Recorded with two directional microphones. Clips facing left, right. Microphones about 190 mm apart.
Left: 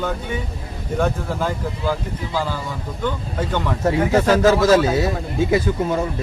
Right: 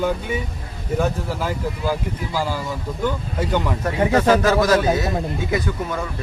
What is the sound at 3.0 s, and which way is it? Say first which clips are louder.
Speech: even; 10° right (ahead or behind).